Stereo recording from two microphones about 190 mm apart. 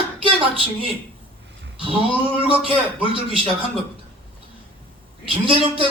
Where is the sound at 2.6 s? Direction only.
25° right (ahead or behind).